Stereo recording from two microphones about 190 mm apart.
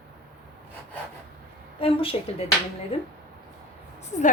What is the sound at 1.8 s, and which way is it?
A woman's voice, 30° left (ahead or behind).